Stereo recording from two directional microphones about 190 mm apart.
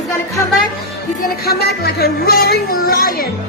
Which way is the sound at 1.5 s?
55° left (ahead or behind).